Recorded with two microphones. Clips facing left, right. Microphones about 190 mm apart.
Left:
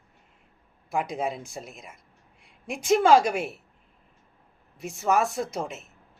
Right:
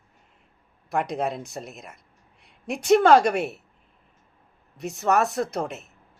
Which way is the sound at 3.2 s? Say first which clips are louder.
Right 4 dB; centre (ahead or behind).